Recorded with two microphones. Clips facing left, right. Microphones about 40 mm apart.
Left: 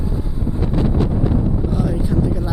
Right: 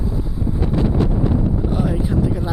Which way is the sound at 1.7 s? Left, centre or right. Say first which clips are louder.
Even; right.